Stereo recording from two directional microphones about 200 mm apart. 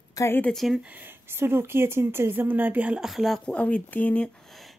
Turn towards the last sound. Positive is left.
turn(degrees=5)  # may be behind; listen again after turning